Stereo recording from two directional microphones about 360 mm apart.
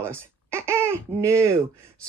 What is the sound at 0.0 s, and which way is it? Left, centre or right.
Speech, centre.